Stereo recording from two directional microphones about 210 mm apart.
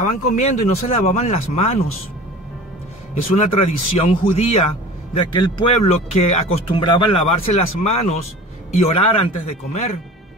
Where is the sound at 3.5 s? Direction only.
30° left (ahead or behind).